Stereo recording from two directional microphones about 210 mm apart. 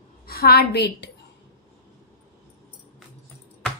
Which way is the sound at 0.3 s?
50° left (ahead or behind).